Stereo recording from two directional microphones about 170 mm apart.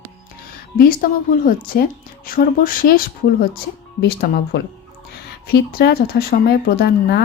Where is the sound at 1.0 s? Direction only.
60° left (ahead or behind).